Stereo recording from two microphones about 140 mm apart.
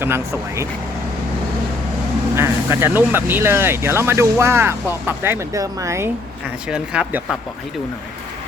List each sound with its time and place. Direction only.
0.0 s speech: 20° right (ahead or behind)
2.3 s speech: 20° right (ahead or behind)
6.7 s speech: 5° right (ahead or behind)